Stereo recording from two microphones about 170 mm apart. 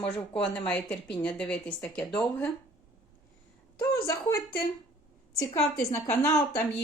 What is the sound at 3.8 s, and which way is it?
Speech, 15° left (ahead or behind).